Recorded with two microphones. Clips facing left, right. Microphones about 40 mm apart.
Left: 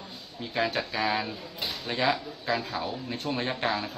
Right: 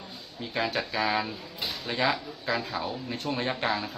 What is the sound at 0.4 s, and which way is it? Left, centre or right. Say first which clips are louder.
Speech: left 1 dB; centre.